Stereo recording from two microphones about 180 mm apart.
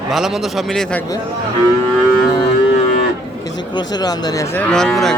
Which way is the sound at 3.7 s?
20° left (ahead or behind).